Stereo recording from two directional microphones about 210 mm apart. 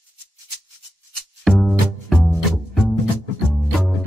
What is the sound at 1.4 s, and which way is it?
Music, centre (ahead or behind).